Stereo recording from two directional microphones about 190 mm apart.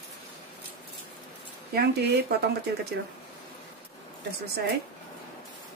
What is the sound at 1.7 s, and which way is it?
Speech, 55° right (ahead or behind).